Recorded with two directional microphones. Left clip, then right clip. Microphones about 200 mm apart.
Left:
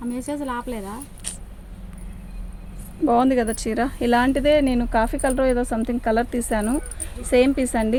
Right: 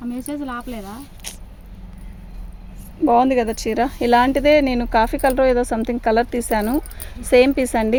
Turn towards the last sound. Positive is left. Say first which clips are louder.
# right 3 dB
turn(degrees=-40)  # may be behind; listen again after turning